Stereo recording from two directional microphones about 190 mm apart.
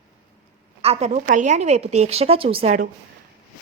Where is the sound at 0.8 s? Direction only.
35° right (ahead or behind).